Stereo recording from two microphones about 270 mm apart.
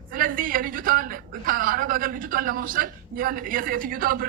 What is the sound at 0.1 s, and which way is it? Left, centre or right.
A man's voice, right.